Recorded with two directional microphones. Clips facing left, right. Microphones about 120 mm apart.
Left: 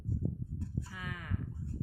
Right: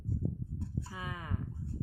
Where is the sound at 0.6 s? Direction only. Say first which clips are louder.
Right 1 dB; 25° right (ahead or behind).